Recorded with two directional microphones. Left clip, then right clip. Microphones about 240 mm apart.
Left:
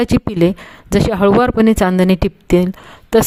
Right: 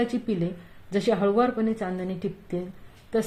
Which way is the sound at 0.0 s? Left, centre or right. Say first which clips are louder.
Left 13 dB; left.